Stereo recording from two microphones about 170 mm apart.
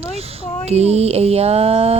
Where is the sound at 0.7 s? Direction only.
40° right (ahead or behind).